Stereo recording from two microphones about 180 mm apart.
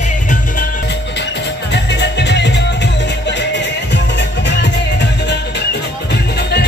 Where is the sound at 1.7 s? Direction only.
70° left (ahead or behind).